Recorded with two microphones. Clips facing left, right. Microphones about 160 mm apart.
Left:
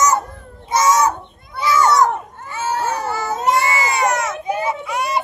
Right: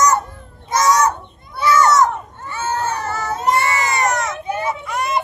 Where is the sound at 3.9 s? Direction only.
5° left (ahead or behind).